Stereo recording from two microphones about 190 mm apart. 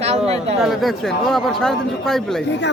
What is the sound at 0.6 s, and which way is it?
Speech, centre (ahead or behind).